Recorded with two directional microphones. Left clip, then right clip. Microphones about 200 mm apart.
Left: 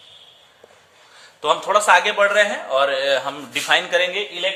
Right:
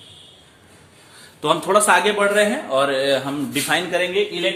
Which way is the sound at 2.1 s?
20° left (ahead or behind).